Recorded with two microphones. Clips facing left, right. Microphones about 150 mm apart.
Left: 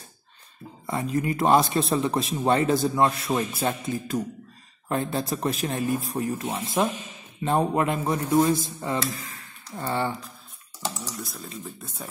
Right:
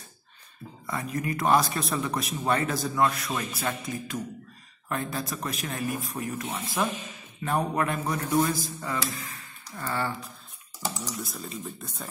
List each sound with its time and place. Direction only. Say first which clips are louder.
0.8 s a man's voice: left 5 dB; 25° left (ahead or behind)
11.1 s speech: right 1 dB; centre (ahead or behind)